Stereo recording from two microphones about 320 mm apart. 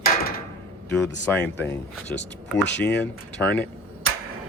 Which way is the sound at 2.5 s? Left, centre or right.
Left.